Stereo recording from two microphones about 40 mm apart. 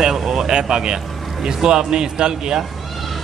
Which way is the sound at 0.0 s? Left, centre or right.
Centre.